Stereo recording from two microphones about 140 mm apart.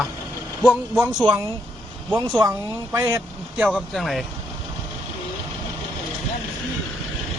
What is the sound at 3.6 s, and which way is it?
Speech, 10° right (ahead or behind).